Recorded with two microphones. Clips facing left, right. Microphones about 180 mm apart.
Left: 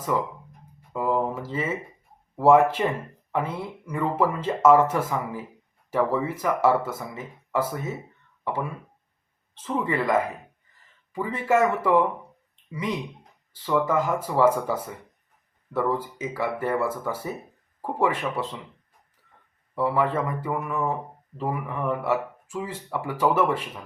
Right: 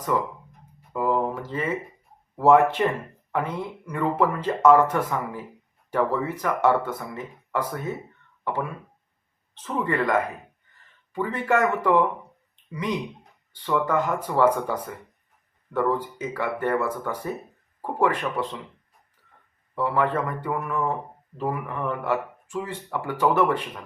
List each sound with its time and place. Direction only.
0.1 s speech: centre (ahead or behind)
0.9 s a sound: centre (ahead or behind)
2.3 s speech: 5° left (ahead or behind)
9.6 s speech: 5° left (ahead or behind)
19.7 s speech: 5° left (ahead or behind)